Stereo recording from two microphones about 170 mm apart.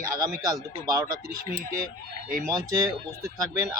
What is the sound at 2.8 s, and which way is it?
Speech, 20° right (ahead or behind).